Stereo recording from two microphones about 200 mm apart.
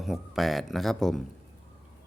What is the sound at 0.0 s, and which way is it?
Speech, centre (ahead or behind).